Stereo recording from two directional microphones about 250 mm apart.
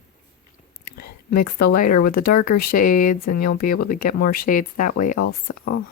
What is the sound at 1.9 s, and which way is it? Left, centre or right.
Speech, left.